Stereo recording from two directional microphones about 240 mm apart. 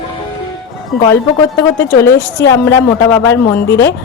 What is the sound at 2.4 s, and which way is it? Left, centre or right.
A man's voice, centre.